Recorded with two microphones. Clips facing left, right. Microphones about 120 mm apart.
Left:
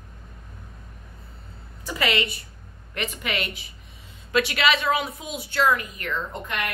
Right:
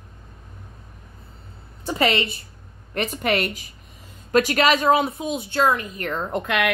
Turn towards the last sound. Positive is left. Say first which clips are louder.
# right 8 dB
turn(degrees=-75)  # may be behind; listen again after turning